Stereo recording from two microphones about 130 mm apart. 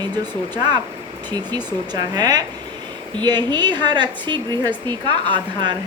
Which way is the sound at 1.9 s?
30° right (ahead or behind).